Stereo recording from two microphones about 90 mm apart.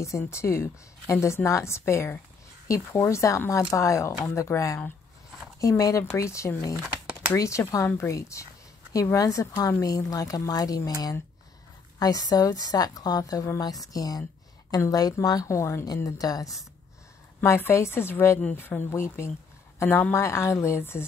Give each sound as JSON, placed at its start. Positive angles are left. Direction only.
{"t": 0.0, "sound": "a woman's voice", "side_deg": 30}
{"t": 12.0, "sound": "a woman's voice", "side_deg": 45}
{"t": 17.4, "sound": "a woman's voice", "side_deg": 25}